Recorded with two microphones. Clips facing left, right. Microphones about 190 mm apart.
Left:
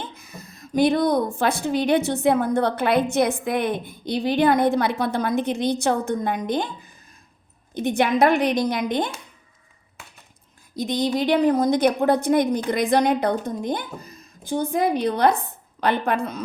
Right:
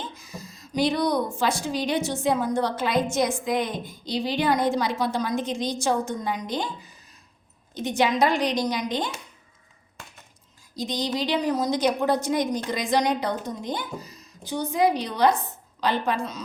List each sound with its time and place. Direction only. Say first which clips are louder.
0.0 s a sound: left 1 dB; 60° left (ahead or behind)
1.4 s a woman's voice: left 4 dB; 55° left (ahead or behind)
10.8 s a woman's voice: left 5 dB; 60° left (ahead or behind)